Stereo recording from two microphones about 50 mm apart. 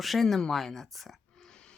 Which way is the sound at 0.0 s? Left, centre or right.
Centre.